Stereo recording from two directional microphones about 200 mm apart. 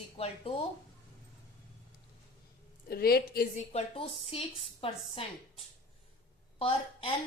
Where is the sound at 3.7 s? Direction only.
30° left (ahead or behind).